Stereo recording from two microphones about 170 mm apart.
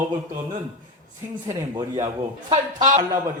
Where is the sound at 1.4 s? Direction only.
25° right (ahead or behind).